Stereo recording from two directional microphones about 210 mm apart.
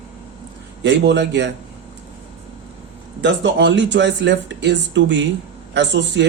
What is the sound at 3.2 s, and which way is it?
A man's voice, 60° right (ahead or behind).